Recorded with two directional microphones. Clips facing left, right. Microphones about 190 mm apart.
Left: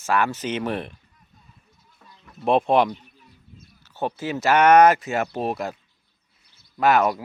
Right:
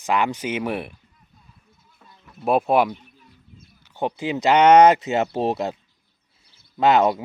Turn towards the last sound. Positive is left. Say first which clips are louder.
# right 2 dB
turn(degrees=-25)  # may be behind; listen again after turning